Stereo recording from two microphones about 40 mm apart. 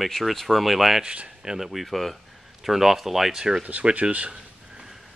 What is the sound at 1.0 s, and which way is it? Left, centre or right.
Speech, right.